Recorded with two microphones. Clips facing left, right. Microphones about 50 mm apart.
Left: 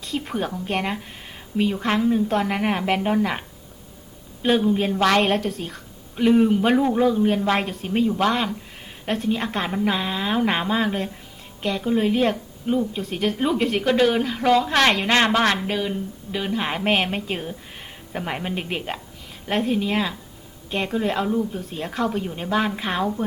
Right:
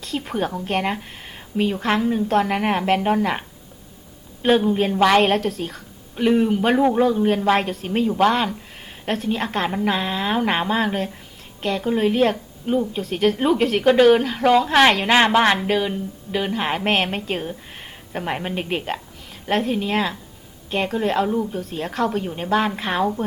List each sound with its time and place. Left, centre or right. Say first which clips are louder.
0.0 s a woman's voice: right 2 dB; centre
4.4 s a woman's voice: right 2 dB; centre
6.7 s speech: right 2 dB; centre
7.3 s a woman's voice: right 3 dB; centre